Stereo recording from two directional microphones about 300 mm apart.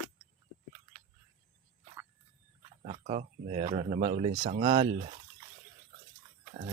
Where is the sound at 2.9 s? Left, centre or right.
Right.